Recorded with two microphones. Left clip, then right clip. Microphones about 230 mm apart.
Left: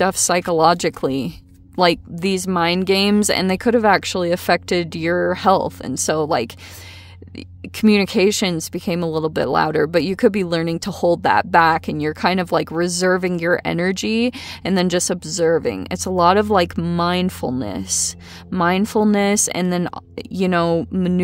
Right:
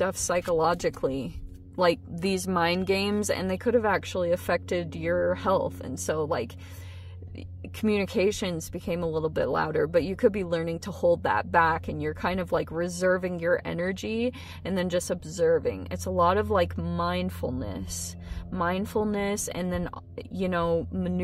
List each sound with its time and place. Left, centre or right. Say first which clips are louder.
0.0 s speech: left 9 dB; left
7.8 s speech: left 9 dB; left